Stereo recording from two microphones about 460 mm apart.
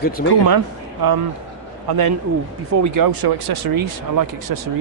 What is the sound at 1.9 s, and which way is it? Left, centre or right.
Speech, right.